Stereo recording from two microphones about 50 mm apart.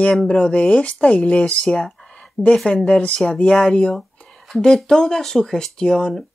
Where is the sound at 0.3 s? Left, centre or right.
Centre.